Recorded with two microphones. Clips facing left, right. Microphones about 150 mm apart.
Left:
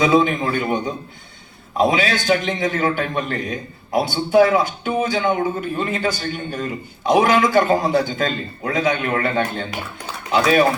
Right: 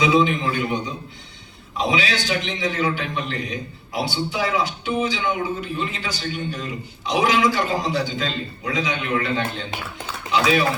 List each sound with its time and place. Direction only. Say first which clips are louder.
0.0 s a man's voice: left 2 dB; 50° left (ahead or behind)